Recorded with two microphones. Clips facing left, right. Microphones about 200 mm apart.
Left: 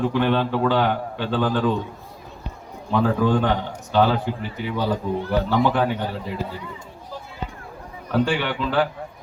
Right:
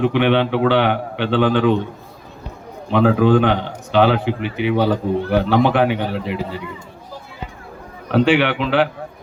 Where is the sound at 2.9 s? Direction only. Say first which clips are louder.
Right 6 dB; 85° right.